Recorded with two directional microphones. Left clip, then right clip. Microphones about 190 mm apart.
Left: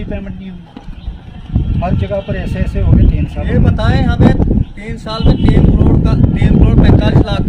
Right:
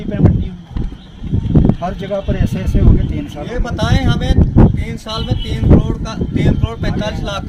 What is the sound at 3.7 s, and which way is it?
A man's voice, 5° left (ahead or behind).